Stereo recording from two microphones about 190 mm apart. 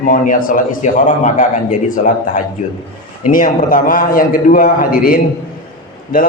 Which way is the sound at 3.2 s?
45° left (ahead or behind).